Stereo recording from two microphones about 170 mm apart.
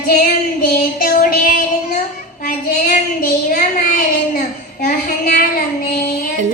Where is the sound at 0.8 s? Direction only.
55° left (ahead or behind).